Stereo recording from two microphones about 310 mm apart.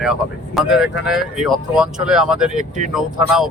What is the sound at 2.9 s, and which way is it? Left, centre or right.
Speech, centre.